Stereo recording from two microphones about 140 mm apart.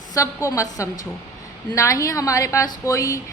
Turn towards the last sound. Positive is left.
turn(degrees=20)  # may be behind; listen again after turning